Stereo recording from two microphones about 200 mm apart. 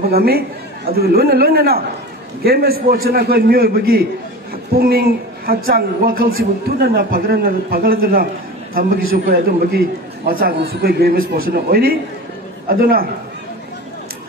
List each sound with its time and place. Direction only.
0.1 s a man's voice: 50° right (ahead or behind)